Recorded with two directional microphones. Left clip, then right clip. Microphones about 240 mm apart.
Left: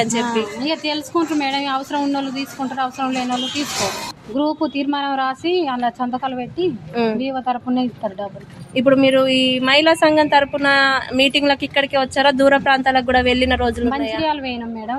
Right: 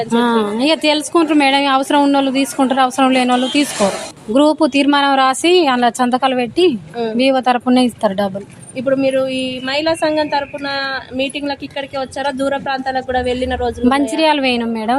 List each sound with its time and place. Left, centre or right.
0.2 s a woman's voice: right
8.7 s a woman's voice: centre
14.2 s a woman's voice: right